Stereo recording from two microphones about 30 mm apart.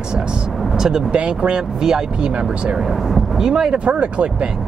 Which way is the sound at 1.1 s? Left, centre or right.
Right.